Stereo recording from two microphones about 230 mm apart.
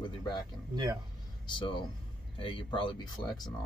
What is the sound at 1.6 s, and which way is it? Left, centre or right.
Speech, left.